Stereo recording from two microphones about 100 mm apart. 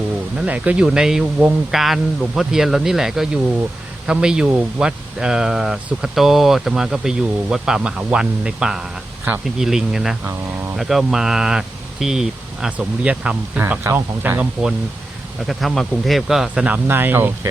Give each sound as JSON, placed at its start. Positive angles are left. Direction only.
{"t": 0.3, "sound": "speech", "side_deg": -15}
{"t": 15.4, "sound": "speech", "side_deg": 0}
{"t": 16.6, "sound": "speech", "side_deg": -20}